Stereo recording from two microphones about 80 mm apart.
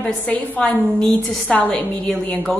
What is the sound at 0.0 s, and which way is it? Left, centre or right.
A woman's voice, centre.